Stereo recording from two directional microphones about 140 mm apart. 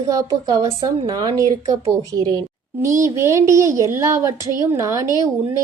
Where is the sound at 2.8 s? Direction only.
20° right (ahead or behind).